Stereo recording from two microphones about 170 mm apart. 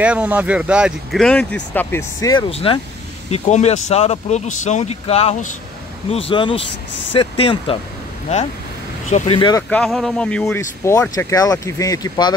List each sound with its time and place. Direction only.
0.0 s speech: 10° right (ahead or behind); by 7.8 s 30° left (ahead or behind)
9.1 s speech: 30° left (ahead or behind)
9.6 s speech: 5° left (ahead or behind)
10.4 s speech: 15° left (ahead or behind)